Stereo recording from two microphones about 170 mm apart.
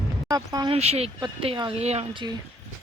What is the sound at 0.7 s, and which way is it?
Speech, 40° right (ahead or behind).